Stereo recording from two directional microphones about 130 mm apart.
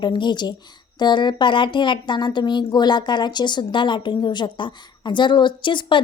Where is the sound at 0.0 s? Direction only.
35° left (ahead or behind).